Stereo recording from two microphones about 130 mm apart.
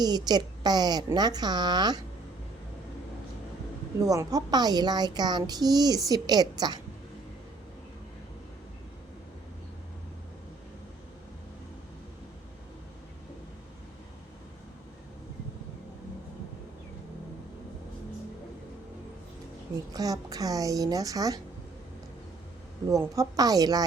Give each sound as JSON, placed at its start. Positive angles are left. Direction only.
{"t": 0.0, "sound": "a woman's voice", "side_deg": -30}
{"t": 4.0, "sound": "a woman's voice", "side_deg": -25}
{"t": 19.9, "sound": "a woman's voice", "side_deg": -30}
{"t": 22.9, "sound": "a woman's voice", "side_deg": -25}